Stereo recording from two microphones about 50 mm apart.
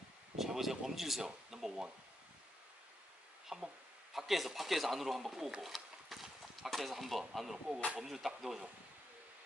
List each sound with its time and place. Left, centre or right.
0.4 s a man's voice: centre
3.5 s speech: right
4.1 s a man's voice: centre